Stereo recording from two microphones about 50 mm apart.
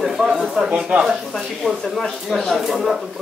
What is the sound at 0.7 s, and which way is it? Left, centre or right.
Speech, right.